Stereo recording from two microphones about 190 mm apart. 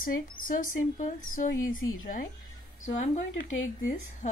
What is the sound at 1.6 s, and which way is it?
Speech, 90° left.